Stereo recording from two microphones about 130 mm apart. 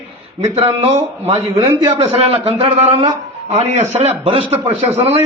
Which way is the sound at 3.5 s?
60° right (ahead or behind).